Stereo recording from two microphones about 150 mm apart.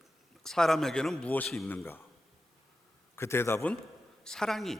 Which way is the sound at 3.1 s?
15° left (ahead or behind).